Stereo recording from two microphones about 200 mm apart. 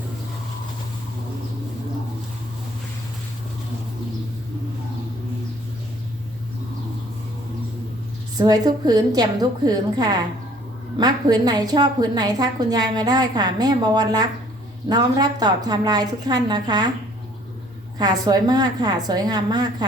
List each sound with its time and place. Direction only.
8.4 s a woman's voice: 20° right (ahead or behind)
17.9 s a woman's voice: 20° right (ahead or behind)